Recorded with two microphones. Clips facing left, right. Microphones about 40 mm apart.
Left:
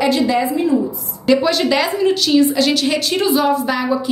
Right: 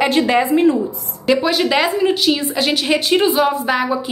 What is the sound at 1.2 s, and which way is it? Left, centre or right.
A woman's voice, centre.